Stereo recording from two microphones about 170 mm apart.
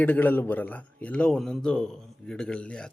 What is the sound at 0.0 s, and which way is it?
A man's voice, 10° left (ahead or behind).